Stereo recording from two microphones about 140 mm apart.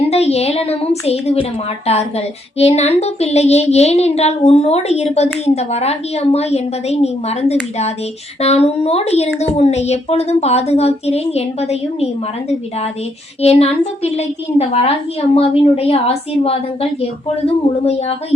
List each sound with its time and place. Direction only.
0.1 s a woman's voice: 50° left (ahead or behind)
13.4 s a woman's voice: 45° left (ahead or behind)